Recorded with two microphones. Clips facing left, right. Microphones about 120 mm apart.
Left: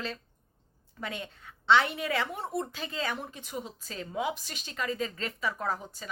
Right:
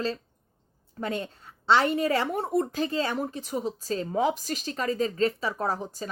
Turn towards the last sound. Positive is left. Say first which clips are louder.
# right 4 dB
turn(degrees=-35)  # may be behind; listen again after turning